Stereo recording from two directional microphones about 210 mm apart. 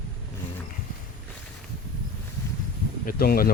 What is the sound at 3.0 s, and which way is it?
Speech, 45° left (ahead or behind).